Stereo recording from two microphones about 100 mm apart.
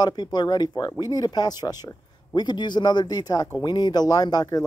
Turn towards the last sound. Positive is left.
turn(degrees=45)  # may be behind; listen again after turning